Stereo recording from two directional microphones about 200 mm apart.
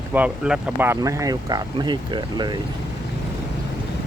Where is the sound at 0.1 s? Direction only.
5° right (ahead or behind); by 2.6 s 20° right (ahead or behind).